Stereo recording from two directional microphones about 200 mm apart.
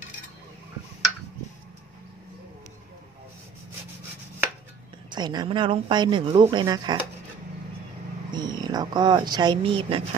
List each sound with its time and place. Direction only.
5.1 s speech: 20° right (ahead or behind)
8.3 s speech: 20° right (ahead or behind)